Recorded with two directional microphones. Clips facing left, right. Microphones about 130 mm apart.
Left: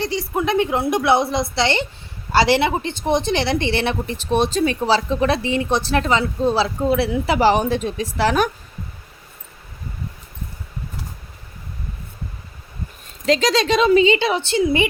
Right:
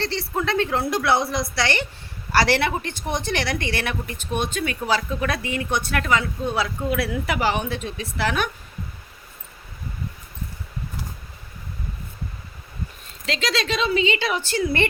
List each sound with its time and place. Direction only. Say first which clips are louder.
0.0 s a woman's voice: left 4 dB; 15° left (ahead or behind); by 8.4 s 35° left (ahead or behind)
13.2 s a woman's voice: left 8 dB; 40° left (ahead or behind); by 14.8 s 20° left (ahead or behind)